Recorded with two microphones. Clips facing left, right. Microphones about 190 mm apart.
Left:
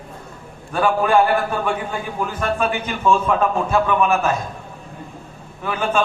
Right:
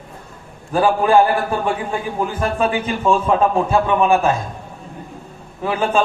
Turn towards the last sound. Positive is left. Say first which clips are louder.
# right 3 dB
turn(degrees=-30)  # may be behind; listen again after turning